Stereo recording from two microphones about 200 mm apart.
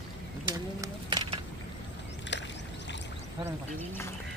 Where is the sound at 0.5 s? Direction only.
20° right (ahead or behind).